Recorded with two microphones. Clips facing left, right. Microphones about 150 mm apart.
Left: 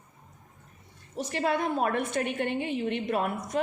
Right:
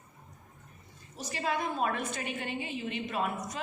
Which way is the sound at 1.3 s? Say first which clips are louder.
Left 5 dB; 65° left (ahead or behind).